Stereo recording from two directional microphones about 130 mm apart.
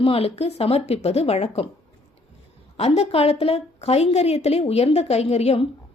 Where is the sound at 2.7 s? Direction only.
55° left (ahead or behind).